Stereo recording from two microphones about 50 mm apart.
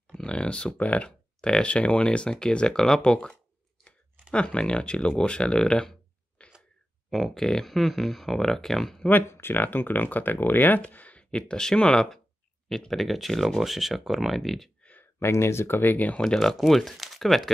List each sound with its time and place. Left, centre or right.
0.1 s a sound: centre
0.7 s speech: left
7.1 s speech: centre
9.3 s speech: left; by 14.7 s centre
14.8 s a sound: left
15.1 s speech: left
16.5 s speech: centre